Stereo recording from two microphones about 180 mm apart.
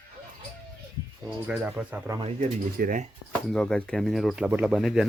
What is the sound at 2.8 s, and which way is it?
Speech, 50° right (ahead or behind).